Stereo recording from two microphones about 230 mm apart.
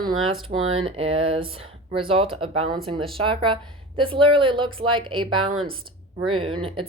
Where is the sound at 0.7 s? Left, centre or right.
Right.